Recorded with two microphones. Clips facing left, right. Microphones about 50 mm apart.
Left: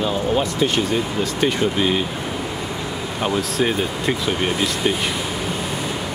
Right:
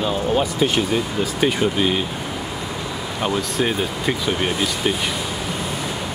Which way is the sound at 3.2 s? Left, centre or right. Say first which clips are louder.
Left 1 dB; centre.